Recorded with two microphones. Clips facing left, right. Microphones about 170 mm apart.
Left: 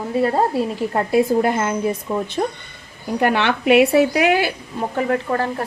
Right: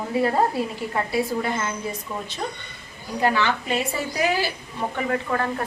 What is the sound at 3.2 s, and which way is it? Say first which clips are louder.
A woman's voice: left 3 dB; 65° left (ahead or behind).